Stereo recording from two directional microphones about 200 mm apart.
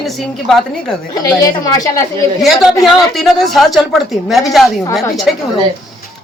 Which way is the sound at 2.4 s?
Centre (ahead or behind).